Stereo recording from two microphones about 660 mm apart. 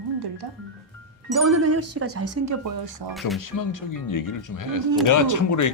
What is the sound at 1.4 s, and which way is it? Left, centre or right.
Speech, right.